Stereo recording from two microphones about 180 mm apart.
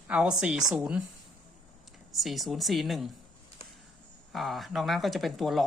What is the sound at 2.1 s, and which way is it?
Speech, centre (ahead or behind).